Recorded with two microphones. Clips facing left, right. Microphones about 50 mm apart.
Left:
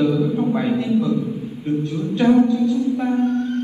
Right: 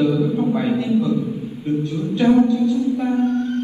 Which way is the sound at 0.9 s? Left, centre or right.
Left.